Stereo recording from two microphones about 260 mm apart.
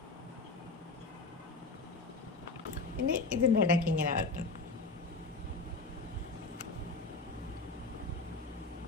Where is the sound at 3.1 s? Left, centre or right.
Right.